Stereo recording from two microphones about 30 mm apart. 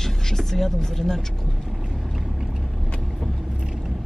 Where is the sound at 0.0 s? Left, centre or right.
Centre.